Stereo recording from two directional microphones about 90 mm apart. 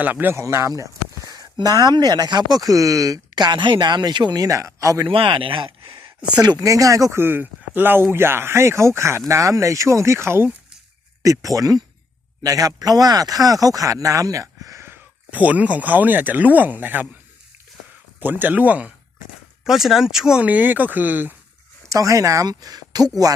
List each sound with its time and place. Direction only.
0.0 s speech: 20° right (ahead or behind)
0.3 s a sound: 35° right (ahead or behind)
1.6 s speech: 45° right (ahead or behind)
4.4 s speech: 35° right (ahead or behind)
5.0 s speech: 75° right (ahead or behind)
6.6 s speech: 40° right (ahead or behind)
11.5 s speech: 40° right (ahead or behind)
15.3 s speech: 15° right (ahead or behind)
18.2 s speech: 20° right (ahead or behind)
19.6 s speech: 5° right (ahead or behind); by 21.3 s 20° right (ahead or behind)
21.8 s speech: 40° right (ahead or behind)